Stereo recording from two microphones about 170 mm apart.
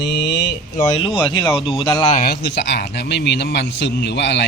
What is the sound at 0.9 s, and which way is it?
Speech, 30° left (ahead or behind).